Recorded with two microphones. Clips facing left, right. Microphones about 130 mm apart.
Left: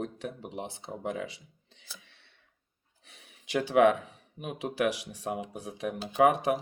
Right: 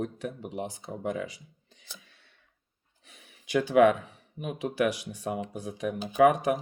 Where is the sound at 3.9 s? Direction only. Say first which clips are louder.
Left 2 dB; 40° right (ahead or behind).